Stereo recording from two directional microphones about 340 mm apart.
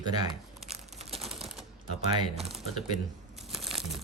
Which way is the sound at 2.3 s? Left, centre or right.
Centre.